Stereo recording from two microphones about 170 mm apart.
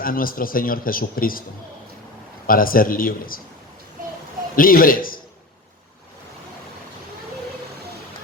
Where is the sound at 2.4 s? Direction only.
55° left (ahead or behind).